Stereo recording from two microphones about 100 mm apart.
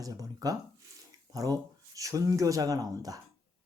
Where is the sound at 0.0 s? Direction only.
35° right (ahead or behind).